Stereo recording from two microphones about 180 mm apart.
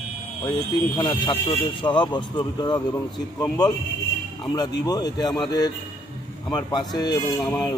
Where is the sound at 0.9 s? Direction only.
25° left (ahead or behind).